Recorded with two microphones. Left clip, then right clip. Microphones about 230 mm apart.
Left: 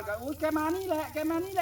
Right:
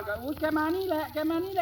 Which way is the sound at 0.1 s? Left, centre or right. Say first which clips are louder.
Right 1 dB; centre.